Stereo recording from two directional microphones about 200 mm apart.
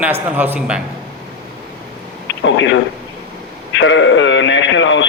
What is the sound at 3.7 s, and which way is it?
Radio, 65° left (ahead or behind).